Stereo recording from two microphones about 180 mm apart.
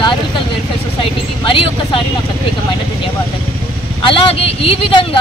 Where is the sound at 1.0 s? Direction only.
30° left (ahead or behind).